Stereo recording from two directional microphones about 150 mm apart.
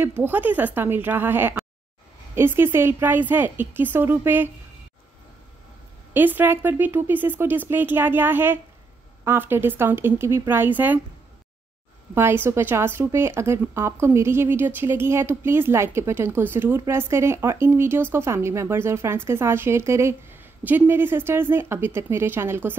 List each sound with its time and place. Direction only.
0.0 s a woman's voice: 15° right (ahead or behind)
6.1 s a woman's voice: 10° right (ahead or behind)
12.1 s a woman's voice: 15° right (ahead or behind)